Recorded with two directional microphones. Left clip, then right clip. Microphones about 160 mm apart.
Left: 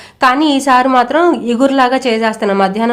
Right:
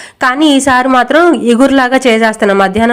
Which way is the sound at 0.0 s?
25° right (ahead or behind).